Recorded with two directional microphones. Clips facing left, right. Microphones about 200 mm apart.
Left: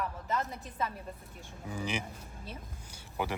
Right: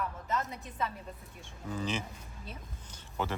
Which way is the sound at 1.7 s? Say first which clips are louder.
Right 1 dB; 15° left (ahead or behind).